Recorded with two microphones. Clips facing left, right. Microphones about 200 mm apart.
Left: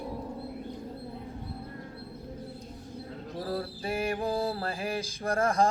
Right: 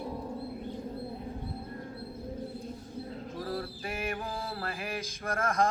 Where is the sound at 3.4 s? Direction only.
35° left (ahead or behind).